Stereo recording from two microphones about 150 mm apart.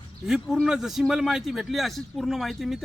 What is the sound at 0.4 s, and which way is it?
A man's voice, centre (ahead or behind).